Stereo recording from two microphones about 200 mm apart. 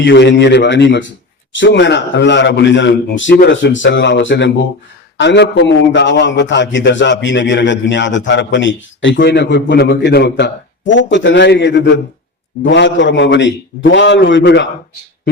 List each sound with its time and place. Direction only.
0.0 s a man's voice: 60° left (ahead or behind)